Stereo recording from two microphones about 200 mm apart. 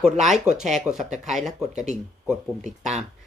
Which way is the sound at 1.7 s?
35° right (ahead or behind).